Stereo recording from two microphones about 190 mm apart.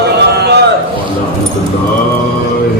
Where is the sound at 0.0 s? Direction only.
60° right (ahead or behind).